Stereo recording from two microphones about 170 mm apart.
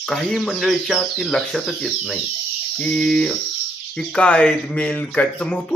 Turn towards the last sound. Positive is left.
turn(degrees=5)  # may be behind; listen again after turning